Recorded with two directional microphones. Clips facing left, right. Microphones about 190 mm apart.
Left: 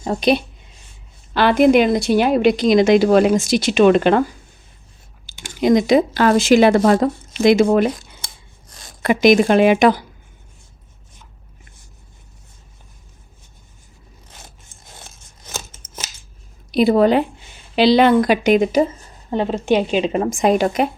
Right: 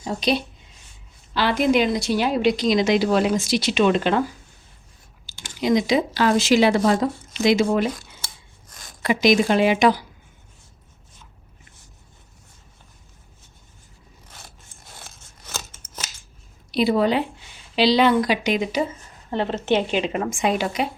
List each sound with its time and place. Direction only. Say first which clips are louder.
0.0 s speech: left 6 dB; 55° left (ahead or behind)
5.2 s speech: left 6 dB; 50° left (ahead or behind)
9.0 s speech: left 5 dB; 55° left (ahead or behind)
16.7 s speech: left 6 dB; 50° left (ahead or behind)
19.3 s a woman's voice: left 4 dB; 15° left (ahead or behind)
20.1 s speech: left 6 dB; 30° left (ahead or behind)
20.4 s speech: left 7 dB; 45° left (ahead or behind)